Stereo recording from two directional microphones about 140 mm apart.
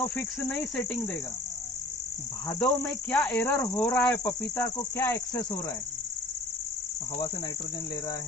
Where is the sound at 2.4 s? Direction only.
25° left (ahead or behind).